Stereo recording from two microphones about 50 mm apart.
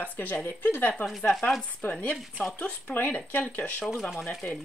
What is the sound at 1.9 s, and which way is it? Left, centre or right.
Speech, left.